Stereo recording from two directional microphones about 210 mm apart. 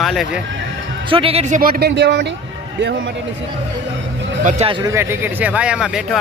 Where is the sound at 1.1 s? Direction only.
25° right (ahead or behind); by 2.3 s 55° right (ahead or behind).